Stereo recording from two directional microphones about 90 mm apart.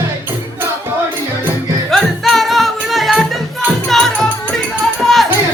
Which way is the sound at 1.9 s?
Centre (ahead or behind).